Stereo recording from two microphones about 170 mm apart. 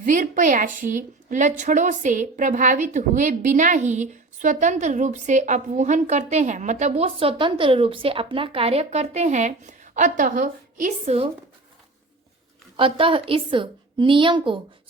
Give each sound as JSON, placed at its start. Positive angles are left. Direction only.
{"t": 0.0, "sound": "a woman's voice", "side_deg": -45}
{"t": 12.7, "sound": "a woman's voice", "side_deg": -30}